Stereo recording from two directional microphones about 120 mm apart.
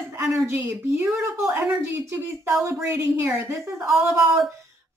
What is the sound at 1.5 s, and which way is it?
A woman's voice, 15° right (ahead or behind).